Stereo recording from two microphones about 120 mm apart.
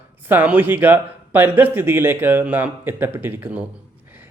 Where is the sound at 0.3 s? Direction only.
15° right (ahead or behind).